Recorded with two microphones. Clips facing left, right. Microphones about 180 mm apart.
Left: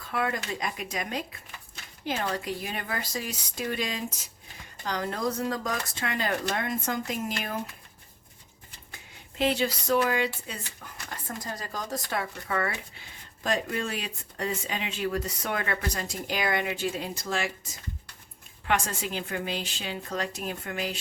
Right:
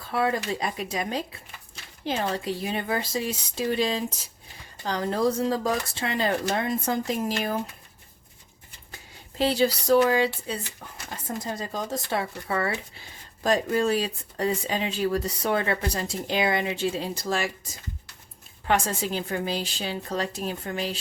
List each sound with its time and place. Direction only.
0.1 s speech: 30° right (ahead or behind)
9.4 s speech: 35° right (ahead or behind)
18.7 s speech: 35° right (ahead or behind)